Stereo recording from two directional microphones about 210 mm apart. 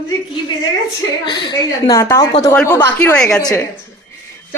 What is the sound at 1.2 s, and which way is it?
Speech, 20° left (ahead or behind).